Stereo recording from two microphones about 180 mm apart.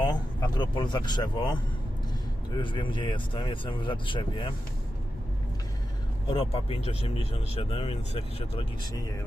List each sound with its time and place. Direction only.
0.0 s speech: 25° left (ahead or behind)
2.6 s speech: 25° left (ahead or behind)
6.3 s speech: 30° left (ahead or behind)